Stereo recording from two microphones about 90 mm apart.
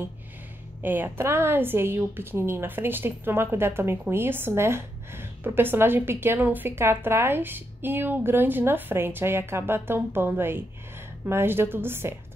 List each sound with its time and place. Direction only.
0.8 s a woman's voice: 20° right (ahead or behind)